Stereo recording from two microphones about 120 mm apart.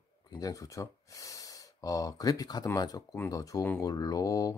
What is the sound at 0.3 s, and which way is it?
Speech, 30° left (ahead or behind).